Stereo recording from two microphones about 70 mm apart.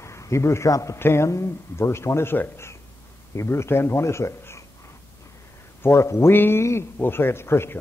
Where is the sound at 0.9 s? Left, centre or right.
Left.